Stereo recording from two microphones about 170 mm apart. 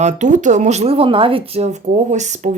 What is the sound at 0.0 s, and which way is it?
Speech, 45° right (ahead or behind).